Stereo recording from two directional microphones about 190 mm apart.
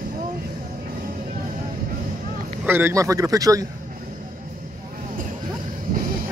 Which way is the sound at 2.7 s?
10° right (ahead or behind).